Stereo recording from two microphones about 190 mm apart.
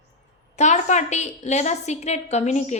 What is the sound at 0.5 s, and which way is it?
A woman's voice, 40° left (ahead or behind).